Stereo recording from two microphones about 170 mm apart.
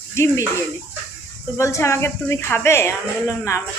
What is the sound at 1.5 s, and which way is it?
A woman's voice, 15° left (ahead or behind).